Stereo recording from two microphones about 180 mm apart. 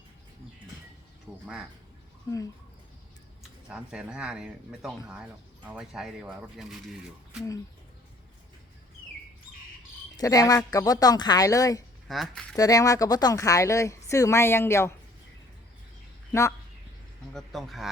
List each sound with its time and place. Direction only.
1.3 s a sound: 5° right (ahead or behind)
3.7 s speech: 5° right (ahead or behind)
10.2 s speech: 20° left (ahead or behind)
12.0 s speech: centre (ahead or behind)
12.5 s speech: 20° left (ahead or behind)
16.3 s speech: 15° left (ahead or behind)
17.3 s speech: centre (ahead or behind)